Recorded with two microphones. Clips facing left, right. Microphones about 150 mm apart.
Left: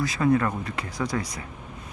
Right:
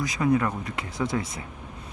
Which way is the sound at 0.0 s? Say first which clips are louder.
Left 1 dB; 20° right (ahead or behind).